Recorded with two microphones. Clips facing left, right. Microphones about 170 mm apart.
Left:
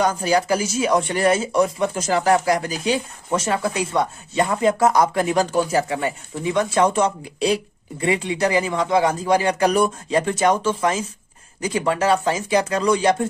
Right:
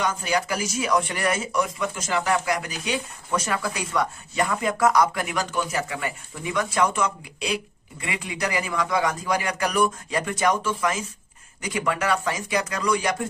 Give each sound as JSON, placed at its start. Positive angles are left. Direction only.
{"t": 0.0, "sound": "speech", "side_deg": 35}